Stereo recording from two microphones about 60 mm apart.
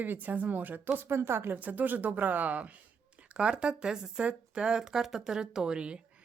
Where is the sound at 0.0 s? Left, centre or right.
Right.